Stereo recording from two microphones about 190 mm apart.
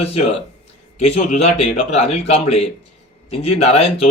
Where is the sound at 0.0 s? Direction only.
35° left (ahead or behind).